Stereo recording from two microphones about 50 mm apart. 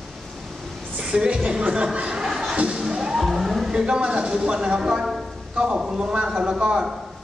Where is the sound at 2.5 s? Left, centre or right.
Right; by 3.8 s centre.